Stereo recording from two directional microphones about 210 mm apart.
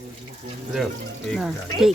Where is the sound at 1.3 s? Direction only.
Centre (ahead or behind).